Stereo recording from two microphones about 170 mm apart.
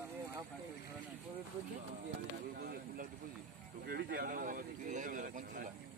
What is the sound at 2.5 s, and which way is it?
Speech, 60° right (ahead or behind).